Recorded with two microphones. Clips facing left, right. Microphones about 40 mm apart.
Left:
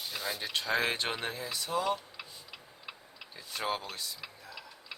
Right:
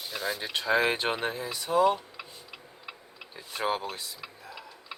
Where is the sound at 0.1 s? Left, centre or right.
Centre.